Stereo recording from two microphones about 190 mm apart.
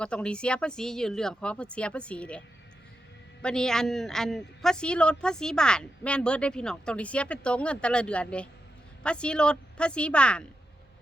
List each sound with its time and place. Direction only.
0.0 s a woman's voice: 5° left (ahead or behind)
3.4 s a woman's voice: 5° left (ahead or behind)